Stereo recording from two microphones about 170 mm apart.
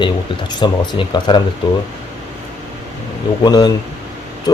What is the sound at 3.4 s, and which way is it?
Speech, 25° left (ahead or behind).